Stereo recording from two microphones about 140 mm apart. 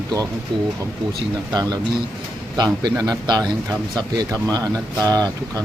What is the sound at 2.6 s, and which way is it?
Speech, 30° right (ahead or behind).